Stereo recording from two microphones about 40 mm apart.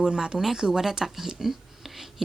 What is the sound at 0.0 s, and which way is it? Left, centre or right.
Speech, right.